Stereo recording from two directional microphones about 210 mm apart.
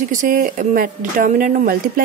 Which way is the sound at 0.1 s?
40° right (ahead or behind).